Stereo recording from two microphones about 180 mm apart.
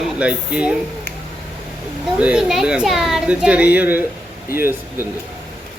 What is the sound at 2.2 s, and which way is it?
A child's voice, 5° right (ahead or behind).